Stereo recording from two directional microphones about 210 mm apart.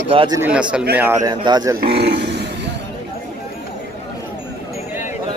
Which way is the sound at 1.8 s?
50° right (ahead or behind).